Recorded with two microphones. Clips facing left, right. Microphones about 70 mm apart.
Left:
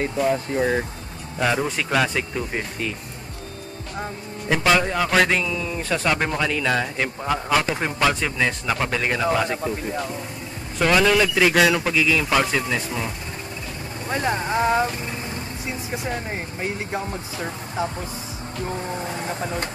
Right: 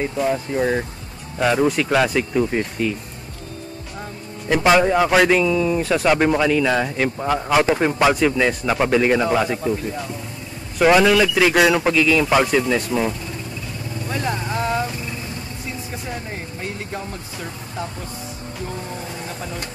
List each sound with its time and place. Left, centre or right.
0.0 s speech: centre
4.6 s a man's voice: centre
10.8 s speech: centre
11.9 s speech: centre
14.0 s speech: left
16.9 s speech: left
19.2 s speech: left